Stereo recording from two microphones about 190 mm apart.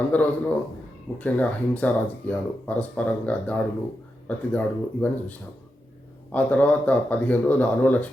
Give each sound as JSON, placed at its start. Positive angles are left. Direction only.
{"t": 0.1, "sound": "speech", "side_deg": 10}
{"t": 6.3, "sound": "speech", "side_deg": 10}